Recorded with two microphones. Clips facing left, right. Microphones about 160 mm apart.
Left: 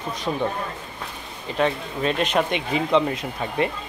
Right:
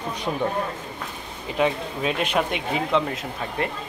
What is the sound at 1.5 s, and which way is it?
Speech, 10° right (ahead or behind).